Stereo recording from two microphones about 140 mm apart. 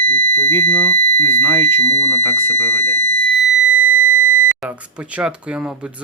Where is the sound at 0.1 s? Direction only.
15° left (ahead or behind).